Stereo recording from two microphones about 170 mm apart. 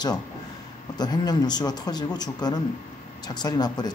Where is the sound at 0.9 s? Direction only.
25° left (ahead or behind).